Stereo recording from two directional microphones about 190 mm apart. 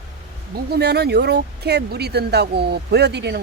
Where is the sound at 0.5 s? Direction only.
60° right (ahead or behind).